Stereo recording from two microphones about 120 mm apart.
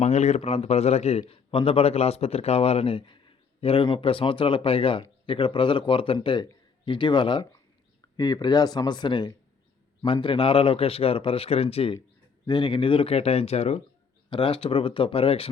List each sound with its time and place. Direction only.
0.0 s speech: 70° left (ahead or behind)
1.3 s speech: 50° left (ahead or behind)
12.5 s speech: 40° left (ahead or behind); by 13.8 s 60° left (ahead or behind)
14.3 s speech: 50° left (ahead or behind)